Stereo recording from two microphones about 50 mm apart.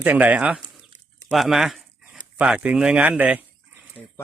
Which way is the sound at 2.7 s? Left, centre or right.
Centre.